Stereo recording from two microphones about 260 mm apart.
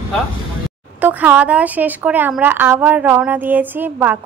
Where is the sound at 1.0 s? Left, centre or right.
Centre.